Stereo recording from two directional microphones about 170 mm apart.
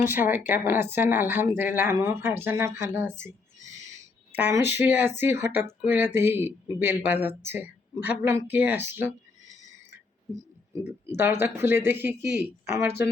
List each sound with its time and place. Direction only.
0.0 s speech: 10° right (ahead or behind)
3.7 s a sound: 20° right (ahead or behind)
4.7 s speech: 10° right (ahead or behind)
10.7 s speech: 20° right (ahead or behind)